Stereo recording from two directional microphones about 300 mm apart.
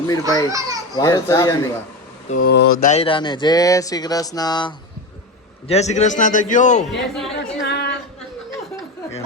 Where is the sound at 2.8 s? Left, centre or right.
Left.